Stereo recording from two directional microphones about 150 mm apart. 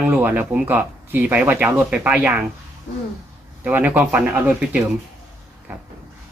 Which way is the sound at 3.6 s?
10° right (ahead or behind).